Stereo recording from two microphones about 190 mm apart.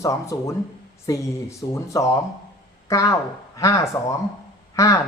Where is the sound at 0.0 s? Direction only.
15° left (ahead or behind).